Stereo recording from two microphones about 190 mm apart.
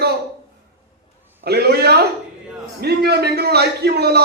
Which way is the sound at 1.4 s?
60° right (ahead or behind).